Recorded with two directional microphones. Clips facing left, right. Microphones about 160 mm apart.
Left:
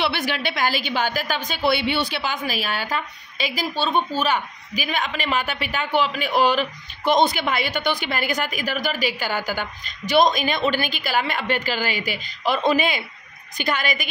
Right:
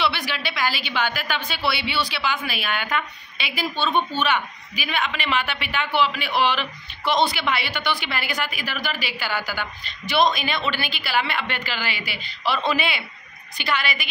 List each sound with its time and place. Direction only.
0.0 s a man's voice: 50° left (ahead or behind)